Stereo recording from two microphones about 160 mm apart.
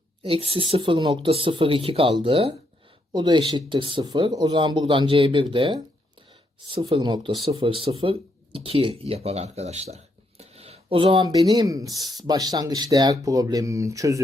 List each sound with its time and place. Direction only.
0.2 s speech: 35° right (ahead or behind); by 14.2 s 20° right (ahead or behind)